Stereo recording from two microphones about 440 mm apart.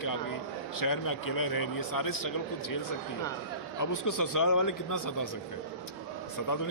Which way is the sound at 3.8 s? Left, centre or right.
Left.